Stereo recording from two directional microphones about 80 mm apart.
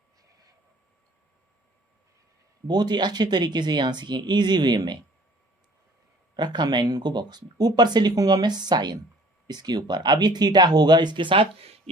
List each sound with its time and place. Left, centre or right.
2.6 s speech: right
6.3 s speech: right